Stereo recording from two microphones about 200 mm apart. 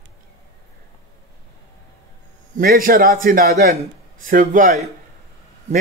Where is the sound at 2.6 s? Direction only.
45° right (ahead or behind).